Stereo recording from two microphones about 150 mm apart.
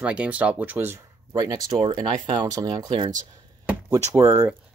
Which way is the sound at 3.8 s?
20° right (ahead or behind).